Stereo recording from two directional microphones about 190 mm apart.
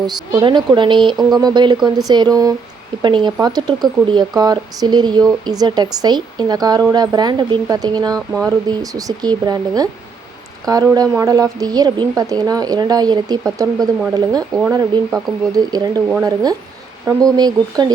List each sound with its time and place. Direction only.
0.0 s speech: 20° right (ahead or behind)